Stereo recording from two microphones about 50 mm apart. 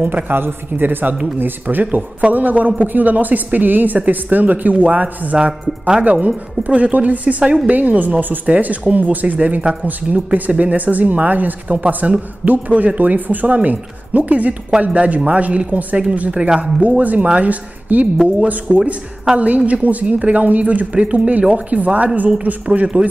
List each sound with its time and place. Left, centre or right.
0.0 s a man's voice: right
7.7 s a man's voice: right
16.8 s a man's voice: right